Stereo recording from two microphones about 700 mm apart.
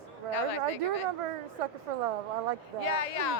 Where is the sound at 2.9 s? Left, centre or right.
Left.